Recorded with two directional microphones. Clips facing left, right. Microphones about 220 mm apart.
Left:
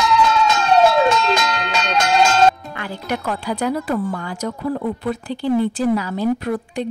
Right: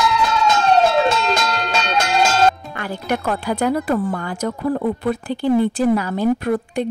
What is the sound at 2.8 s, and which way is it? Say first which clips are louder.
Speech: right 2 dB; 50° right (ahead or behind).